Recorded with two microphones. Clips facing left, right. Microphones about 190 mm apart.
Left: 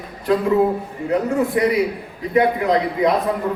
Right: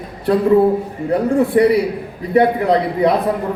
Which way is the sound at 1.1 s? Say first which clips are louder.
Right 4 dB; 35° right (ahead or behind).